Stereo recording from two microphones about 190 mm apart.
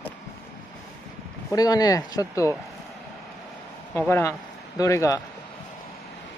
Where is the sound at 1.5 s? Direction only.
20° left (ahead or behind).